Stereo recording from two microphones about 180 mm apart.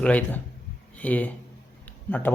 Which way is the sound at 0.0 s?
10° left (ahead or behind).